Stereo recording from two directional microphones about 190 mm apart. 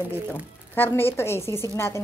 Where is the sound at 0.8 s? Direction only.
10° left (ahead or behind).